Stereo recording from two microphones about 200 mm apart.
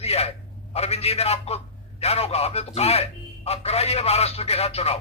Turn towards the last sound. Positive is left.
turn(degrees=30)  # may be behind; listen again after turning